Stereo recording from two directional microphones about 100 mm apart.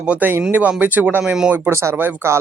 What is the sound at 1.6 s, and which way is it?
Speech, 25° right (ahead or behind).